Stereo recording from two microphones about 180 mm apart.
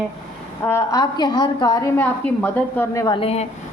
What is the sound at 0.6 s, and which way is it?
A woman's voice, 15° left (ahead or behind).